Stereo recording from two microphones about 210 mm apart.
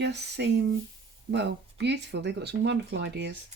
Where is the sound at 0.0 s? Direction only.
55° right (ahead or behind).